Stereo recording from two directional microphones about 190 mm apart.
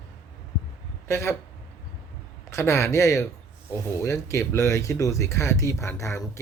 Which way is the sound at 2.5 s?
15° left (ahead or behind).